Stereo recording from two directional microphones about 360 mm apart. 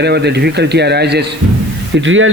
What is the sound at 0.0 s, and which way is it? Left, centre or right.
A man's voice, right.